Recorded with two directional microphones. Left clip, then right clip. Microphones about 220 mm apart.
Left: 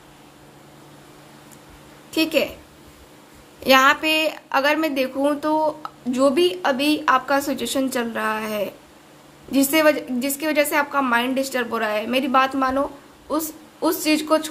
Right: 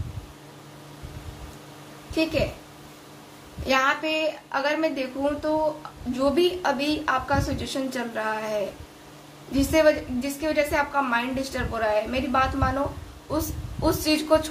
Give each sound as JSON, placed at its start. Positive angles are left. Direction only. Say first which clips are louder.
{"t": 3.6, "sound": "a woman's voice", "louder": "left 7 dB", "side_deg": 35}